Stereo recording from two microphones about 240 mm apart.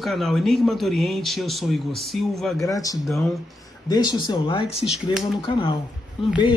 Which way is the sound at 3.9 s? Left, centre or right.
Centre.